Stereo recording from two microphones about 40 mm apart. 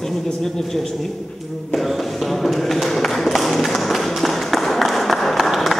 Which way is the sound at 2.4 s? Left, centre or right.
Centre.